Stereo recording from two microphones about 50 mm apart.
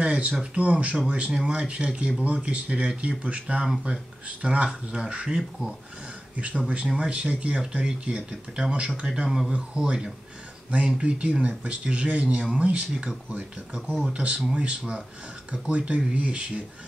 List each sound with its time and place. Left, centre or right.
0.0 s speech: right
14.1 s speech: right